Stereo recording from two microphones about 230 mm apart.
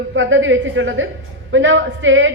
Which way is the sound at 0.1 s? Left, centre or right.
Right.